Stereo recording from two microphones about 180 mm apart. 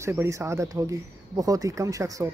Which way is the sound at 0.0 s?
15° right (ahead or behind).